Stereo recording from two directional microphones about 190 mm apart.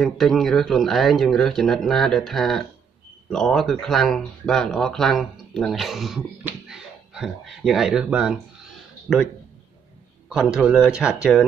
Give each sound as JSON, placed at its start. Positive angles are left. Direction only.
{"t": 0.0, "sound": "speech", "side_deg": 0}
{"t": 10.3, "sound": "speech", "side_deg": -5}